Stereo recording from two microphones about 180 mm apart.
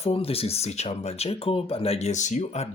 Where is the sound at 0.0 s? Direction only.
30° left (ahead or behind).